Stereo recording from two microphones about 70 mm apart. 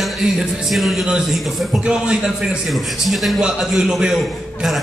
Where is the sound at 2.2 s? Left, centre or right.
Centre.